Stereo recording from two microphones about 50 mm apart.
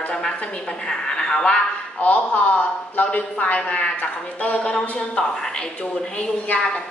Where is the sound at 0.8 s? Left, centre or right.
Centre.